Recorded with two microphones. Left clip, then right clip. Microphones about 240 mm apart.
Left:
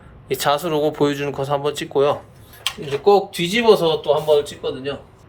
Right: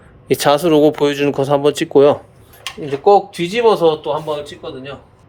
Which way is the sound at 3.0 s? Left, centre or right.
Right.